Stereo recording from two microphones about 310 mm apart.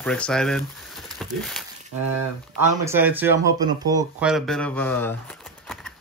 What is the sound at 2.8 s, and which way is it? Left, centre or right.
Speech, centre.